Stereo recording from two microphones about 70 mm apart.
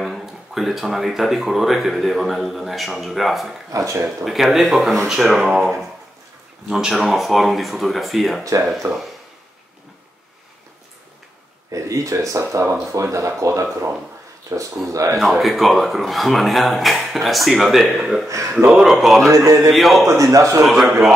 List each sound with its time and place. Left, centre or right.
0.0 s speech: centre
3.7 s speech: right
4.2 s speech: centre
6.7 s speech: centre
8.8 s speech: right
11.7 s speech: right
15.1 s speech: centre
19.2 s speech: right
19.7 s speech: centre
20.2 s speech: right
20.6 s speech: centre